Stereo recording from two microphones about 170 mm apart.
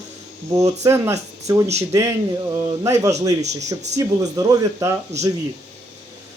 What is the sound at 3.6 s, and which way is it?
Speech, 20° right (ahead or behind).